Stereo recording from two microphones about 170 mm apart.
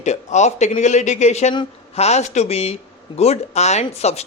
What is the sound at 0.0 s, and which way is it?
Speech, 45° left (ahead or behind).